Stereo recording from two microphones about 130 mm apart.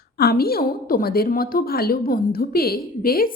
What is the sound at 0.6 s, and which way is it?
A woman's voice, 90° left.